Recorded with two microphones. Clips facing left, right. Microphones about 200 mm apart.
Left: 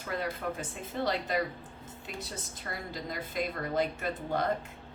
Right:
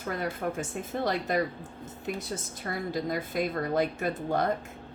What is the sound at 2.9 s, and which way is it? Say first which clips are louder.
Speech: right 6 dB; 50° right (ahead or behind).